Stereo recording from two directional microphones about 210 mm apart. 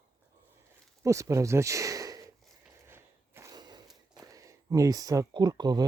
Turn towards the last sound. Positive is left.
turn(degrees=-20)  # may be behind; listen again after turning